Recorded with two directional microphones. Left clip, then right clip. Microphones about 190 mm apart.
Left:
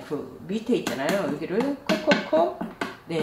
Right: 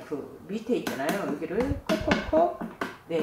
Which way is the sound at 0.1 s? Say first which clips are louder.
Left 3 dB; 35° left (ahead or behind).